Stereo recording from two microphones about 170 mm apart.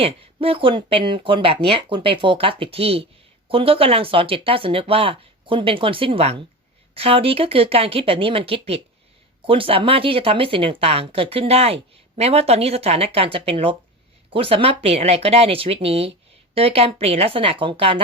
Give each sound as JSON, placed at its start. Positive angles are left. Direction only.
{"t": 0.0, "sound": "speech", "side_deg": -35}